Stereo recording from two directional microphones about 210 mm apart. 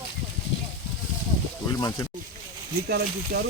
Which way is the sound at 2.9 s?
50° right (ahead or behind).